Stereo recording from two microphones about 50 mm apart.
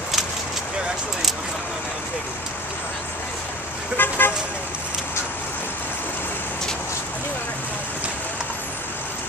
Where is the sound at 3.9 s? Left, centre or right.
Left.